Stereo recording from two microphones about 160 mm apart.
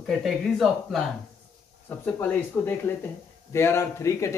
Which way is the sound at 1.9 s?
15° left (ahead or behind).